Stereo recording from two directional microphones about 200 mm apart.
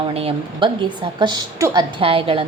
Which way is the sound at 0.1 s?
30° right (ahead or behind).